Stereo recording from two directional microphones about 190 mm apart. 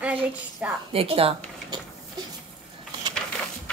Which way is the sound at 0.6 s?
10° right (ahead or behind).